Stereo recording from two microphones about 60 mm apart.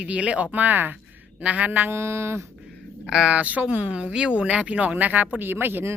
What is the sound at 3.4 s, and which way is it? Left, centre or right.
A woman's voice, right.